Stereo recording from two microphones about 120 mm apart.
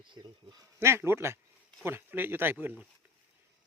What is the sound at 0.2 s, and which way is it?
Speech, 35° right (ahead or behind).